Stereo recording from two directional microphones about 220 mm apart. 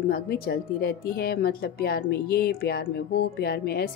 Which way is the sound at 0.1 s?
45° left (ahead or behind).